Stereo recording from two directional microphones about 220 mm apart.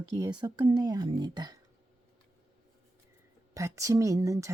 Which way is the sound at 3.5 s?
15° right (ahead or behind).